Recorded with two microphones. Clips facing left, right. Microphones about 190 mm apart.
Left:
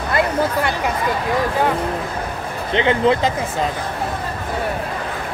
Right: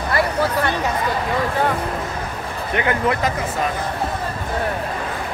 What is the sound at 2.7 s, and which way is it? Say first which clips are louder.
Speech: left 4 dB; 25° left (ahead or behind).